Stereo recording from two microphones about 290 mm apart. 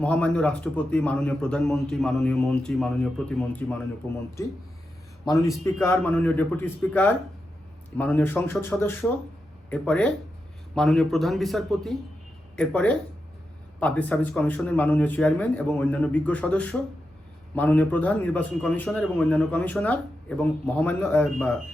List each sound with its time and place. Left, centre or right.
0.0 s a man's voice: centre
5.2 s a man's voice: centre
7.9 s a man's voice: centre